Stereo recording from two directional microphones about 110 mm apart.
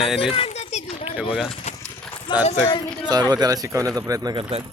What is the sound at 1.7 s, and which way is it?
Horse, 75° left (ahead or behind).